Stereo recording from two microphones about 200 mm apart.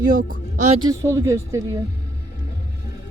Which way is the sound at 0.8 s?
15° right (ahead or behind).